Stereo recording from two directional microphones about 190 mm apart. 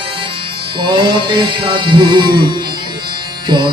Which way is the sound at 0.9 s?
25° right (ahead or behind).